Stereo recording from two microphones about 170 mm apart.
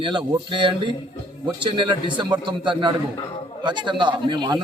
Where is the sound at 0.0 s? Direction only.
30° right (ahead or behind).